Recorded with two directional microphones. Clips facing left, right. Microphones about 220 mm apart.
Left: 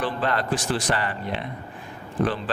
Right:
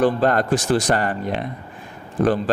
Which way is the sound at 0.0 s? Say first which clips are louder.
Right 8 dB; 45° right (ahead or behind).